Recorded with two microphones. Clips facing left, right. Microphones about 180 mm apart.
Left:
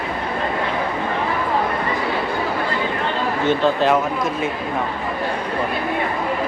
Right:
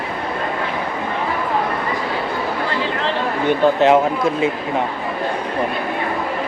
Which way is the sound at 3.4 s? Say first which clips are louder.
Right 3 dB; 20° right (ahead or behind).